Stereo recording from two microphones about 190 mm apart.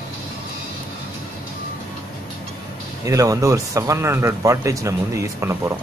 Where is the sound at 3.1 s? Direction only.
15° right (ahead or behind).